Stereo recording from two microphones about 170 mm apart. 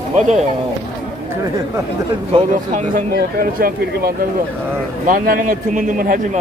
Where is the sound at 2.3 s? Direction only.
30° right (ahead or behind).